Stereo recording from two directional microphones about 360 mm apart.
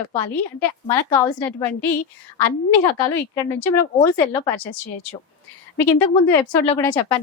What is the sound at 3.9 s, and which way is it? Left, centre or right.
Speech, centre.